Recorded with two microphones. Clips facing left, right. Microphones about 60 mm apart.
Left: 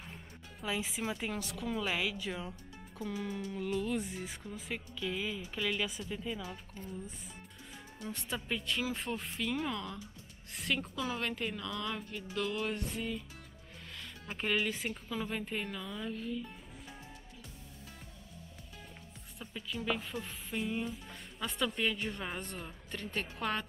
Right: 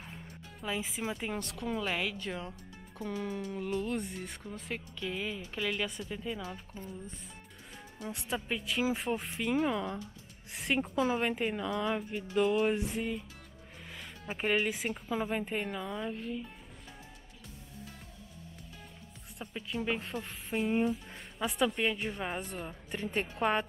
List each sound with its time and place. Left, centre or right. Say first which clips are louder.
0.6 s a woman's voice: right 1 dB; centre
8.0 s a woman's voice: right 3 dB; centre
9.1 s speech: right 4 dB; centre
10.5 s speech: right 3 dB; centre
10.8 s speech: right 7 dB; right
13.9 s music: right 3 dB; centre
14.8 s speech: right 4 dB; centre
19.4 s speech: right 2 dB; centre